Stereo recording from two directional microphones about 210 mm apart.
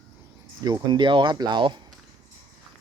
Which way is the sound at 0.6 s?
20° right (ahead or behind).